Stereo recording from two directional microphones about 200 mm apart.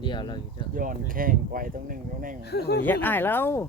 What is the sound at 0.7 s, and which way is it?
Speech, 45° right (ahead or behind).